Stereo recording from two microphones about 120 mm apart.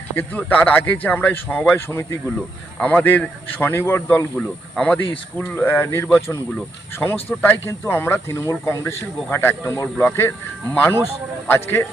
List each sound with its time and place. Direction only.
0.2 s speech: 15° left (ahead or behind)
4.4 s speech: 10° left (ahead or behind)